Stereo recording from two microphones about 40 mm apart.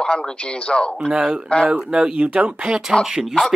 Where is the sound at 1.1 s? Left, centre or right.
Right.